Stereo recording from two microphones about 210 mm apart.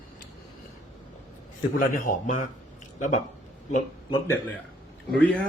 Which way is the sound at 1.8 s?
40° left (ahead or behind).